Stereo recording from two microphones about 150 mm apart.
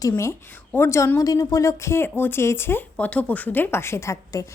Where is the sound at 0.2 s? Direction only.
20° left (ahead or behind).